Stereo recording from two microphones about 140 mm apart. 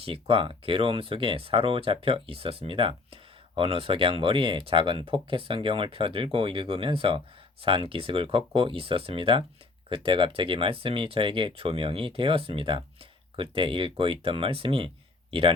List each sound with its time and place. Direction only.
0.0 s speech: 40° right (ahead or behind)